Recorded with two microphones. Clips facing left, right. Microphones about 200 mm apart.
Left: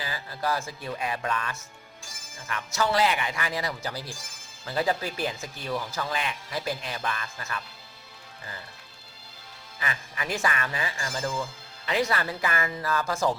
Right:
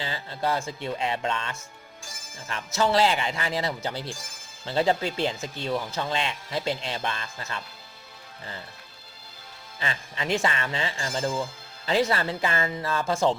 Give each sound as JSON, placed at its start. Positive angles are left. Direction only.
{"t": 0.0, "sound": "speech", "side_deg": -25}
{"t": 9.8, "sound": "speech", "side_deg": -25}